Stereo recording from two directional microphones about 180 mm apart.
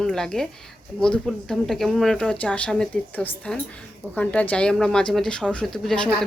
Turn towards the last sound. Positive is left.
turn(degrees=5)  # may be behind; listen again after turning